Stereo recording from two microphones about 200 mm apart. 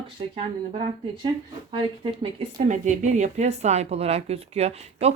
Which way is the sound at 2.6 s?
40° right (ahead or behind).